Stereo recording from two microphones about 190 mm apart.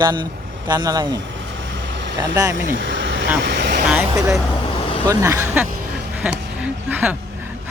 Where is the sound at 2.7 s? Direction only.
75° right (ahead or behind).